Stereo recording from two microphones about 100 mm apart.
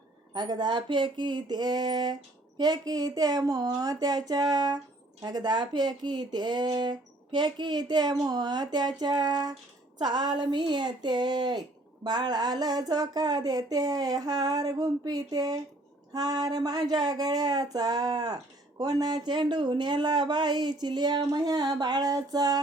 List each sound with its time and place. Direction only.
0.3 s speech: 45° right (ahead or behind)